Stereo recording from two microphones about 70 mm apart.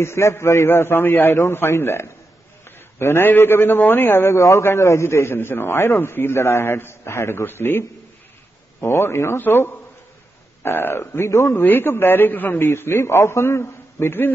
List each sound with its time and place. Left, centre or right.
0.0 s a man's voice: left
8.8 s a man's voice: left
11.5 s a man's voice: left
12.6 s a man's voice: left